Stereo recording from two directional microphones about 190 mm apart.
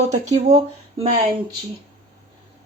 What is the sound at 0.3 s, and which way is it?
Speech, 35° right (ahead or behind).